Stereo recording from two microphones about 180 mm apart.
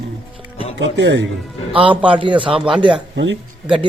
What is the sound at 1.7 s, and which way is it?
Speech, 30° right (ahead or behind).